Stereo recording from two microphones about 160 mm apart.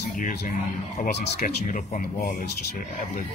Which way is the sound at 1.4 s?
50° left (ahead or behind).